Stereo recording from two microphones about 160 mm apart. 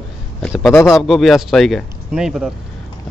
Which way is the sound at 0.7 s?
15° left (ahead or behind).